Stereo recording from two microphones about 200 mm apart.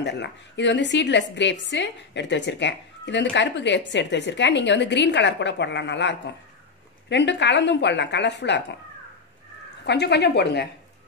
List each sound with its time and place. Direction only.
0.0 s a woman's voice: 60° left (ahead or behind)
9.8 s a woman's voice: 55° left (ahead or behind)